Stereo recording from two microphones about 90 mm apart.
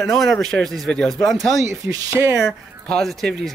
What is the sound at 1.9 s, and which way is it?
Speech, 30° right (ahead or behind).